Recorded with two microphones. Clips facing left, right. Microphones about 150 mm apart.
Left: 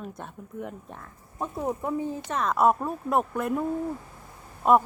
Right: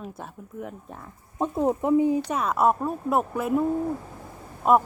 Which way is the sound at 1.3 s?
20° right (ahead or behind).